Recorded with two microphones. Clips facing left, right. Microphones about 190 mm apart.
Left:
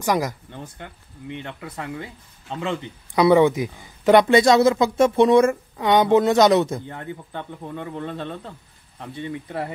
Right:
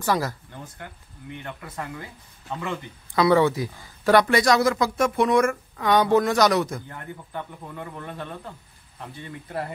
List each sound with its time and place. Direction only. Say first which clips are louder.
0.0 s speech: left 2 dB; 15° left (ahead or behind)